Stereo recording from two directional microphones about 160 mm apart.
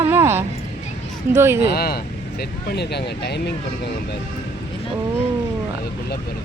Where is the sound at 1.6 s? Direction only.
75° left (ahead or behind).